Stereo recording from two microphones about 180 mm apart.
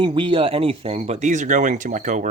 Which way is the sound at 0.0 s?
25° right (ahead or behind).